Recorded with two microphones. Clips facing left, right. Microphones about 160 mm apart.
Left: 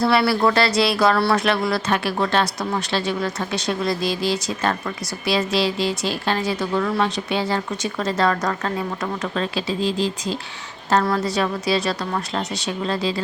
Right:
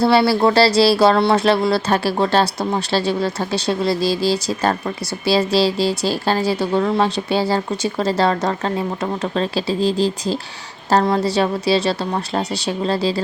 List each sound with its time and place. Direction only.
0.0 s speech: 30° right (ahead or behind)